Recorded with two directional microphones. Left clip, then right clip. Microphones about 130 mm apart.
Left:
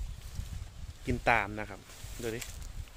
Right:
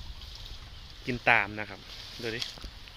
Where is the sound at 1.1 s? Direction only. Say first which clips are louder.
Right 4 dB; 20° left (ahead or behind).